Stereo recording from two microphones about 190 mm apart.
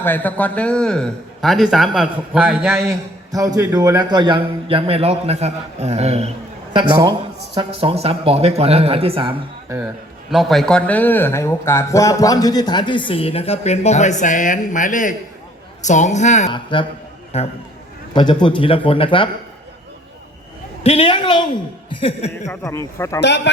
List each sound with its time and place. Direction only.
0.0 s a man's voice: 10° left (ahead or behind); by 6.3 s 35° right (ahead or behind)
6.7 s a man's voice: 20° right (ahead or behind)
10.3 s a woman's voice: centre (ahead or behind); by 16.5 s 40° left (ahead or behind)
16.5 s a woman's voice: 25° left (ahead or behind)
20.8 s speech: 30° left (ahead or behind)
22.4 s speech: 15° left (ahead or behind)
23.2 s speech: 65° left (ahead or behind)